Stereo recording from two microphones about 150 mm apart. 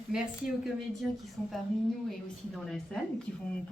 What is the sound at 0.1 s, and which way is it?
A woman's voice, 5° right (ahead or behind).